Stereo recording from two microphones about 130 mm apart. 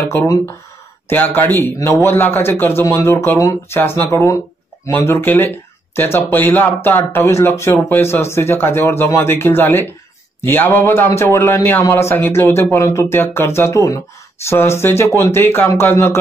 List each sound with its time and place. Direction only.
0.0 s a man's voice: 10° left (ahead or behind)